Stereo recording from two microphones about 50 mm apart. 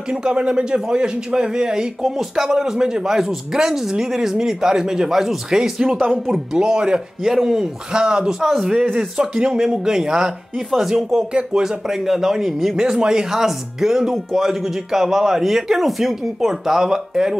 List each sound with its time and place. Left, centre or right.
0.1 s a man's voice: centre
7.9 s speech: centre